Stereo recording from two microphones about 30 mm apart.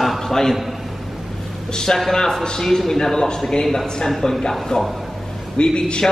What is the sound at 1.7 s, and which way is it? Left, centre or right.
A man's voice, centre.